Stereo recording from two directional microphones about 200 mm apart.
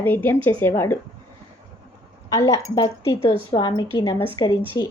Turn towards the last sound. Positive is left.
turn(degrees=20)  # may be behind; listen again after turning